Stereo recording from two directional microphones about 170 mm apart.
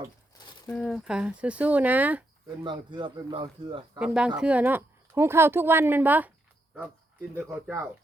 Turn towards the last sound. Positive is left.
turn(degrees=-15)  # may be behind; listen again after turning